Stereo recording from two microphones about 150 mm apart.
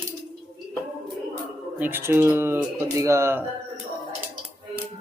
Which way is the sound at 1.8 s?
15° right (ahead or behind).